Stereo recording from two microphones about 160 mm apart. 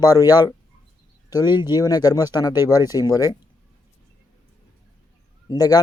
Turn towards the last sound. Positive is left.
turn(degrees=25)  # may be behind; listen again after turning